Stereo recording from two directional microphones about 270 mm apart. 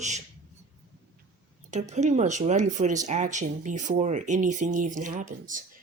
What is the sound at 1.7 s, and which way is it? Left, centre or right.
Speech, right.